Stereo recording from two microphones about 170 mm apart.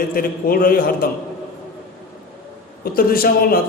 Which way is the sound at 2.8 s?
60° left (ahead or behind).